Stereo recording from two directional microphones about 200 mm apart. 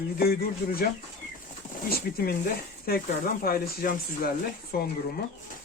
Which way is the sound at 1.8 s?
50° left (ahead or behind).